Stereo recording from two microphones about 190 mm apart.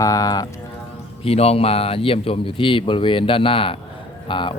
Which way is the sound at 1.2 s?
30° left (ahead or behind).